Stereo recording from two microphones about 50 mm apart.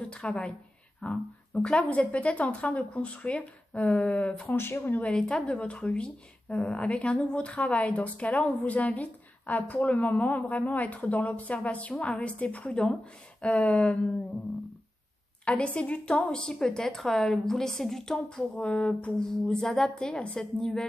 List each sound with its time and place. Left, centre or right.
0.2 s a woman's voice: left
4.3 s speech: left
5.1 s a woman's voice: centre
15.4 s a woman's voice: left
18.6 s a woman's voice: left
19.1 s a woman's voice: centre